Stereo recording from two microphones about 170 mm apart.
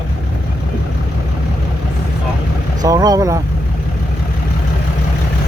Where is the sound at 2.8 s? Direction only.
20° right (ahead or behind).